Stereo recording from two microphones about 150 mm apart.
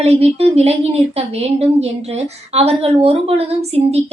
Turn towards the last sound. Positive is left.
turn(degrees=-40)  # may be behind; listen again after turning